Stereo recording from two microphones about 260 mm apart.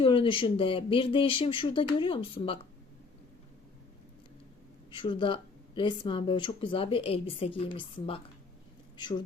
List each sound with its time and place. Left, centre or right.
0.0 s speech: centre
4.9 s speech: centre